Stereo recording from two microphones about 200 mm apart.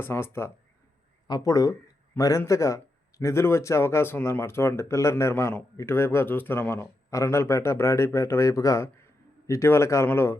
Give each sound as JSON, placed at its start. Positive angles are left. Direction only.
{"t": 0.0, "sound": "speech", "side_deg": 10}